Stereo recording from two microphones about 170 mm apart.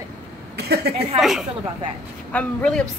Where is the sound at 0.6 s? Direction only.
70° right (ahead or behind).